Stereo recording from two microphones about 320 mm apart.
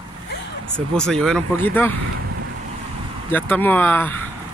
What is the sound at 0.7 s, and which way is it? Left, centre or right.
Speech, centre.